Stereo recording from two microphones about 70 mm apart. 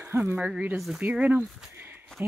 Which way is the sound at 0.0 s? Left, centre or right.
Right.